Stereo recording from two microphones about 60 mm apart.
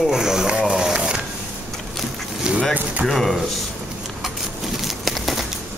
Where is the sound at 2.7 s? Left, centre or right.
Right.